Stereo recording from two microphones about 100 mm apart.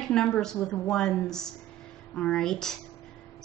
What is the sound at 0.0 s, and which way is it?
A woman's voice, 5° left (ahead or behind).